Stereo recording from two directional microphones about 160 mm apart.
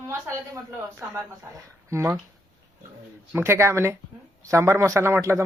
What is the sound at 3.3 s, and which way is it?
Speech, 15° right (ahead or behind).